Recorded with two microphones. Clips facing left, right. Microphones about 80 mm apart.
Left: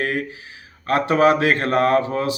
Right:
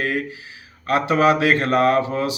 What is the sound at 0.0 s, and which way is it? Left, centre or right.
A man's voice, left.